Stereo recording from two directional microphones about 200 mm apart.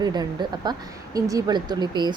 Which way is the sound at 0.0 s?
20° right (ahead or behind).